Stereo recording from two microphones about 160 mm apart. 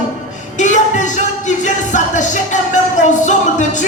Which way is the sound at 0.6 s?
50° left (ahead or behind).